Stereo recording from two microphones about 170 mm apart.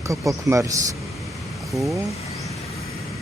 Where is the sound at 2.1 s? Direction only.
35° left (ahead or behind).